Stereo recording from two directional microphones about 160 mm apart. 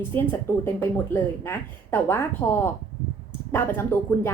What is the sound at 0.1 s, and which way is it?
A woman's voice, 15° left (ahead or behind).